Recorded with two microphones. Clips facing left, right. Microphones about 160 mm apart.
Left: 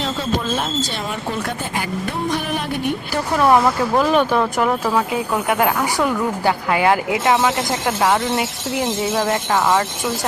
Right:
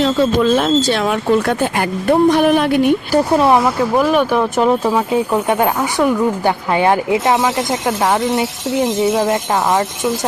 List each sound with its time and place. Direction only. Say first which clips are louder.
0.5 s speech: right 9 dB; 85° right
3.1 s speech: left 1 dB; 30° right (ahead or behind)
3.6 s speech: right 2 dB; 10° right (ahead or behind)
4.5 s speech: right 4 dB; 20° right (ahead or behind)